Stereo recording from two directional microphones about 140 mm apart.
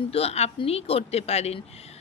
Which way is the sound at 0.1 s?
45° left (ahead or behind).